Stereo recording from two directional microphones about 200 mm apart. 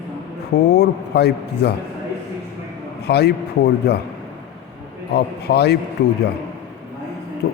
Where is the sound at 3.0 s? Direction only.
55° left (ahead or behind).